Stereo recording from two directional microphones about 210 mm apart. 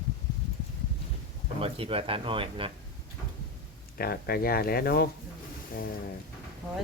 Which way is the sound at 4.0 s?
45° left (ahead or behind).